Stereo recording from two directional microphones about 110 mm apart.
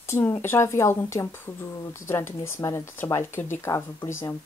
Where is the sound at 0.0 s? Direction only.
20° left (ahead or behind).